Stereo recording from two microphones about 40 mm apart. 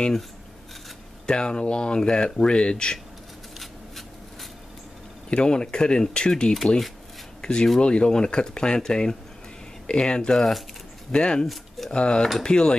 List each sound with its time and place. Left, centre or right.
1.2 s speech: left
3.5 s writing: centre
5.3 s speech: left